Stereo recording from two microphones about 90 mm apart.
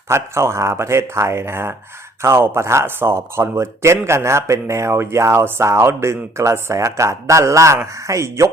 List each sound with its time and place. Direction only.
0.1 s speech: 30° right (ahead or behind)